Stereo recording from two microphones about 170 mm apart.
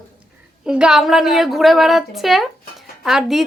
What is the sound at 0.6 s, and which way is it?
A woman's voice, 5° right (ahead or behind).